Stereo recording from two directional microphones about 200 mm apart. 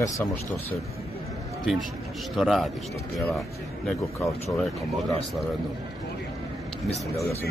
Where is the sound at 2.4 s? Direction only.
Centre (ahead or behind).